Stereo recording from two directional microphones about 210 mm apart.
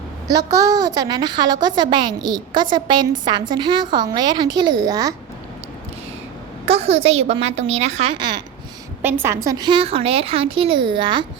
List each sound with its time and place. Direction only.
0.3 s a woman's voice: 15° right (ahead or behind)
6.7 s a woman's voice: 30° right (ahead or behind)
9.0 s a woman's voice: 10° right (ahead or behind)
9.5 s a woman's voice: 20° right (ahead or behind)